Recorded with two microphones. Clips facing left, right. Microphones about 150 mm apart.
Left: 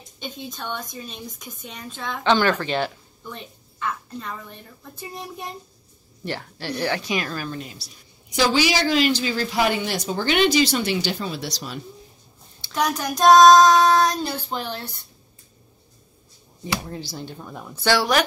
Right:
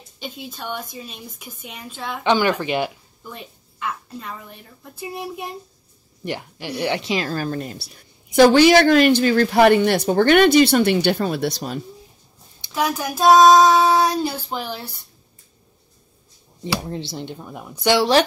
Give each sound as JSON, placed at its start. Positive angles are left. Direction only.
{"t": 0.2, "sound": "a woman's voice", "side_deg": -5}
{"t": 7.0, "sound": "speech", "side_deg": -25}
{"t": 7.3, "sound": "a woman's voice", "side_deg": -45}
{"t": 12.7, "sound": "a woman's voice", "side_deg": -5}
{"t": 16.9, "sound": "speech", "side_deg": -25}
{"t": 17.4, "sound": "a woman's voice", "side_deg": -10}